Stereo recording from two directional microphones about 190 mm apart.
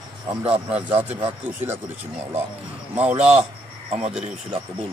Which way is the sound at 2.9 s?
10° right (ahead or behind).